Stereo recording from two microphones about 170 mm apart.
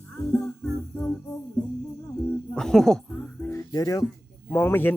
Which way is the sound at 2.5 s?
5° left (ahead or behind).